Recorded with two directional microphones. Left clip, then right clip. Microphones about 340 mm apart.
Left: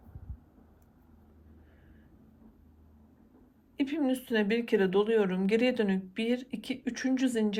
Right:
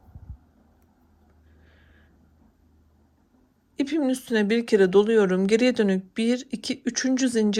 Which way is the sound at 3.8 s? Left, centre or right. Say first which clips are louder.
Right 6 dB; centre.